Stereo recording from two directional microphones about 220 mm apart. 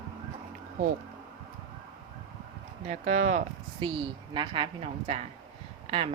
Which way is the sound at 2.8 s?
30° right (ahead or behind).